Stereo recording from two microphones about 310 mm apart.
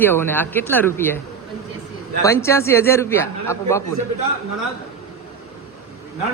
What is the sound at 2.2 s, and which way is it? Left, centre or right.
A man's voice, centre.